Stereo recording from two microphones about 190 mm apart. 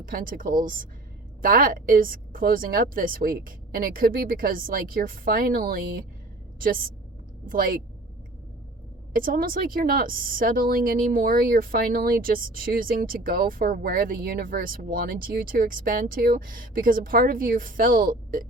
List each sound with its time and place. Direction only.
0.0 s speech: 45° right (ahead or behind)
7.4 s speech: 45° right (ahead or behind)
9.1 s speech: 50° right (ahead or behind)